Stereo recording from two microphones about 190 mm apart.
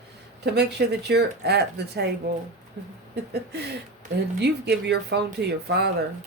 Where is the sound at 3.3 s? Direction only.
60° right (ahead or behind).